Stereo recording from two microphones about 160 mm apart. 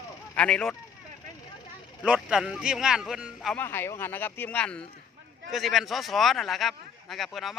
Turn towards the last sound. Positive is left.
turn(degrees=0)  # may be behind; listen again after turning